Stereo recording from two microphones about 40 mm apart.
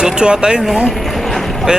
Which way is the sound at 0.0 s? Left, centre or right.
Right.